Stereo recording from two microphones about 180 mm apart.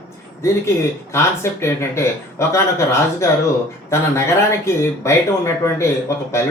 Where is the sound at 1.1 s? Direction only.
15° left (ahead or behind).